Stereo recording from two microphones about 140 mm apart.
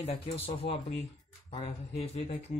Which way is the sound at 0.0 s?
45° left (ahead or behind).